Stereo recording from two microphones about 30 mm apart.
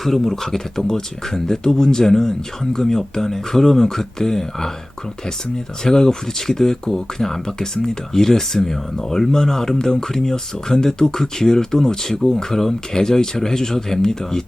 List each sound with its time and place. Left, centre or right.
0.3 s speech: centre
5.8 s speech: left